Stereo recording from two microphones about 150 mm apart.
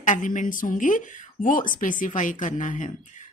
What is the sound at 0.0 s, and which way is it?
Speech, 60° left (ahead or behind).